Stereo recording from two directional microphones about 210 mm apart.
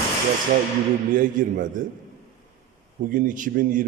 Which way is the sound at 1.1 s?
40° right (ahead or behind).